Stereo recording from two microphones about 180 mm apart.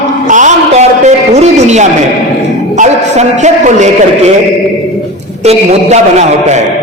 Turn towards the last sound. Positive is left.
turn(degrees=-40)  # may be behind; listen again after turning